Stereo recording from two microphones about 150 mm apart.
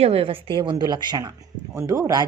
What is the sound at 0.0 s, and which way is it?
A woman's voice, 40° right (ahead or behind).